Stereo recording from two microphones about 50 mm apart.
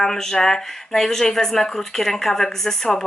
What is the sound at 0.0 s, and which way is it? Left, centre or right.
Speech, centre.